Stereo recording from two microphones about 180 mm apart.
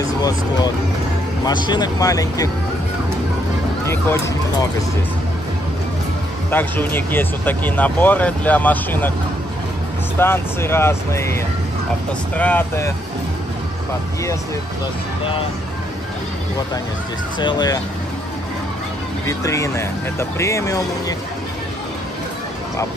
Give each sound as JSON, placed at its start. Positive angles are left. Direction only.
{"t": 0.0, "sound": "speech", "side_deg": 20}
{"t": 3.8, "sound": "speech", "side_deg": 15}
{"t": 6.5, "sound": "speech", "side_deg": 10}
{"t": 10.1, "sound": "speech", "side_deg": 10}
{"t": 17.4, "sound": "speech", "side_deg": 25}
{"t": 19.2, "sound": "speech", "side_deg": 20}